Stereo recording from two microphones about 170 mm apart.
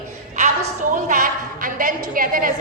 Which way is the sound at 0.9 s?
50° right (ahead or behind).